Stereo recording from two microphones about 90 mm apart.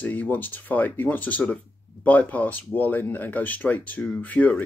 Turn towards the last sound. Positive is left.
turn(degrees=15)  # may be behind; listen again after turning